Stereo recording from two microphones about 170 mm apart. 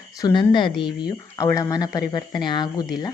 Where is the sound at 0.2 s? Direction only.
25° left (ahead or behind).